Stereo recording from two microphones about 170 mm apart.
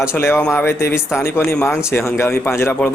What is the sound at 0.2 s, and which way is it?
A man's voice, 15° left (ahead or behind).